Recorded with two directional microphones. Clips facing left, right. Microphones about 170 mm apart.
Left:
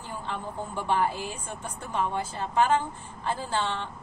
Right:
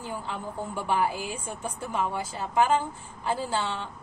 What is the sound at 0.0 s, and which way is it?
A woman's voice, 10° right (ahead or behind).